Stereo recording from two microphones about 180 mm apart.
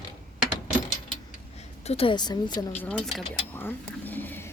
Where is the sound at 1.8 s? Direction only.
35° left (ahead or behind).